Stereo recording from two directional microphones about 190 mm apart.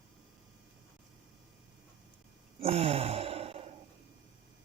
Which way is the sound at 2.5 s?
30° right (ahead or behind).